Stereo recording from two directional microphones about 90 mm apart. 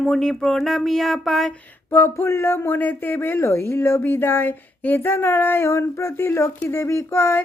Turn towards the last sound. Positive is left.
turn(degrees=30)  # may be behind; listen again after turning